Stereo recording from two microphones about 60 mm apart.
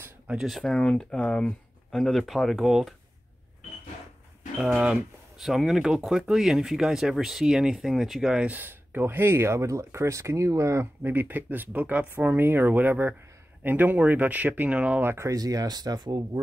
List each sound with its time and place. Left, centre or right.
0.5 s speech: centre
0.7 s speech: centre
1.9 s speech: centre
4.6 s speech: centre
8.5 s speech: right
11.0 s speech: right
15.2 s speech: right